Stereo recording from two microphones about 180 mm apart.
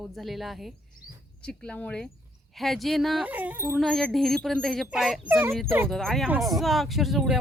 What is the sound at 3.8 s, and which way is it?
A woman's voice, 5° left (ahead or behind).